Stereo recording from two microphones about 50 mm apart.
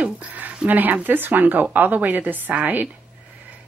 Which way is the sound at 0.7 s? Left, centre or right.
Right.